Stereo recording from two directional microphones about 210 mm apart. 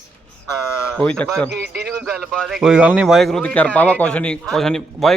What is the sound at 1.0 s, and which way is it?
Speech, 5° left (ahead or behind).